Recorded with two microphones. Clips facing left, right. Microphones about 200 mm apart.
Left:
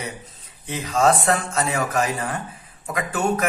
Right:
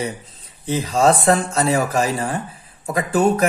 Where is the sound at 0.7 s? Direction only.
35° right (ahead or behind).